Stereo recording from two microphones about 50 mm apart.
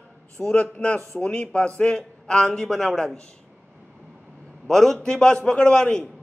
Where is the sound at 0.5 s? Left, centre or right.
Left; by 3.2 s centre.